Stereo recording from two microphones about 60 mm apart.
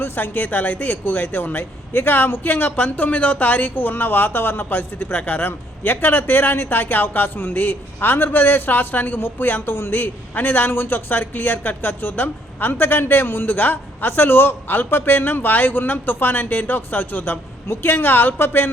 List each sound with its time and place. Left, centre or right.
0.0 s a man's voice: left